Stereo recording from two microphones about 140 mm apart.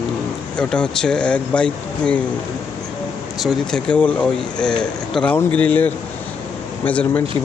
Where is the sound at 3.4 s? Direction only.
5° left (ahead or behind).